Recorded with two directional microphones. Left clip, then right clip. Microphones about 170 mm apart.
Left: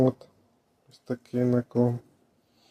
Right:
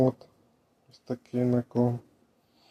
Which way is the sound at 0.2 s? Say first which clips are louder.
Left 2 dB; 20° left (ahead or behind).